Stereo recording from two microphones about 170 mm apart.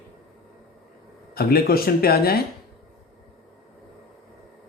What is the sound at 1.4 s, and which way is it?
Speech, 65° left (ahead or behind).